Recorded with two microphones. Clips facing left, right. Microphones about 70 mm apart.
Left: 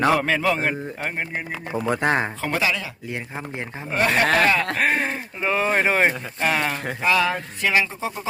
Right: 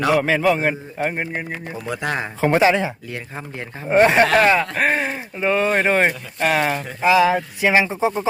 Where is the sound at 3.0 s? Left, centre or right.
Left.